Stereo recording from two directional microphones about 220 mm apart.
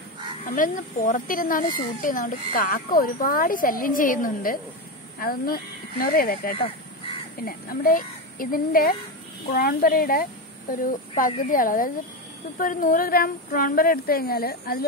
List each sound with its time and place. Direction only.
0.5 s speech: 35° left (ahead or behind)